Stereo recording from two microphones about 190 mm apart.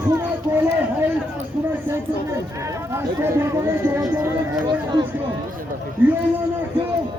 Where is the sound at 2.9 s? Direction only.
15° right (ahead or behind).